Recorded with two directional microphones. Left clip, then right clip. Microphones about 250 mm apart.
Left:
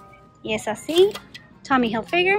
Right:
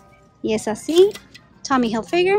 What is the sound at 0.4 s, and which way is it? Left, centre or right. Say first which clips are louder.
A woman's voice: right 3 dB; centre.